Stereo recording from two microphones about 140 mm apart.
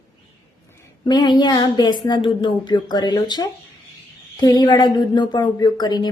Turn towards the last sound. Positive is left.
turn(degrees=30)  # may be behind; listen again after turning